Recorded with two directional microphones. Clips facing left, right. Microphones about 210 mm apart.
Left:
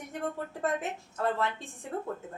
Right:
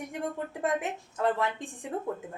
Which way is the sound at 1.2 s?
15° right (ahead or behind).